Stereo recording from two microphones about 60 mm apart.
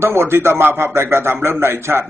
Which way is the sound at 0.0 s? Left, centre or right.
Right.